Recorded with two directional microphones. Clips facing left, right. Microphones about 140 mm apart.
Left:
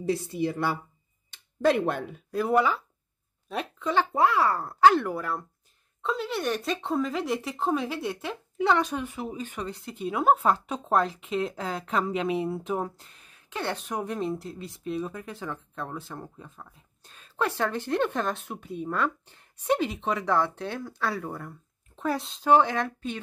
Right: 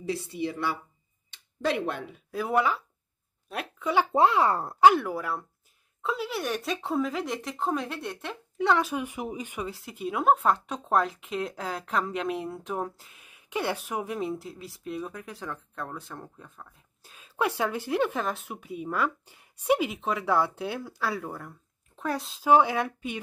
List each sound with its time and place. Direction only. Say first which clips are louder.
0.0 s speech: left 4 dB; 45° left (ahead or behind)
2.3 s speech: left 2 dB; centre (ahead or behind)
4.1 s speech: right 3 dB; 20° right (ahead or behind)